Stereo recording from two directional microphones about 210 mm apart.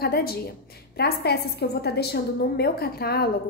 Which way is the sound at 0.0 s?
45° left (ahead or behind).